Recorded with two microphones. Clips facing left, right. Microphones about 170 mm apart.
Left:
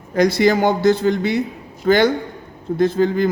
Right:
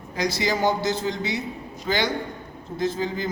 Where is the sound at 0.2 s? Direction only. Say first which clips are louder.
Left 9 dB; 55° left (ahead or behind).